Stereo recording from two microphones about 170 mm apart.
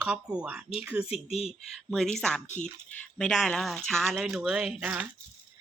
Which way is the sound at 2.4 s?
45° left (ahead or behind).